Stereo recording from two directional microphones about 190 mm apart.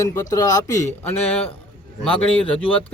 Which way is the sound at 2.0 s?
30° left (ahead or behind).